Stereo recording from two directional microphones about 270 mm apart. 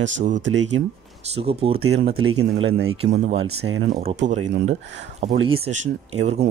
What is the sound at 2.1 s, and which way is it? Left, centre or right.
Speech, right.